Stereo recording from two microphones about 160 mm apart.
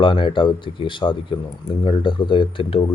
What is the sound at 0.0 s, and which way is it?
A man's voice, 30° left (ahead or behind).